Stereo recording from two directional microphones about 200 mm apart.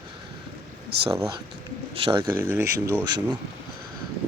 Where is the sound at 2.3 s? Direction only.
10° right (ahead or behind).